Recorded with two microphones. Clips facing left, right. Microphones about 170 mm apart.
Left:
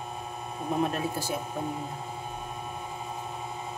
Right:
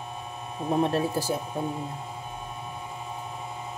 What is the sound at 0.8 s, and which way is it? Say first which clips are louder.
Speech: right 4 dB; 35° right (ahead or behind).